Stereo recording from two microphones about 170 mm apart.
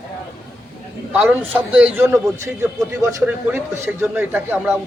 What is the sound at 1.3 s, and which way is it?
A man's voice, 10° right (ahead or behind).